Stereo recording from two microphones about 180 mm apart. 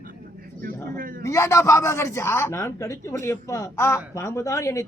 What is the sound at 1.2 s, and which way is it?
A man's voice, 15° left (ahead or behind).